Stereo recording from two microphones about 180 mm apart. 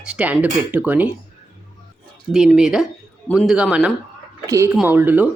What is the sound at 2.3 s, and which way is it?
Speech, 5° right (ahead or behind).